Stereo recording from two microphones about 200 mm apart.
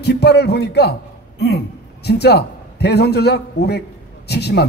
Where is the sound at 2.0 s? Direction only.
55° left (ahead or behind).